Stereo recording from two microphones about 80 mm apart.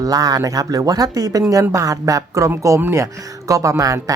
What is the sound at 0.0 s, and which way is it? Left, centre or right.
Speech, right.